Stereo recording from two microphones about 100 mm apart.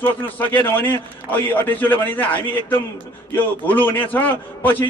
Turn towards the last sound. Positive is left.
turn(degrees=15)  # may be behind; listen again after turning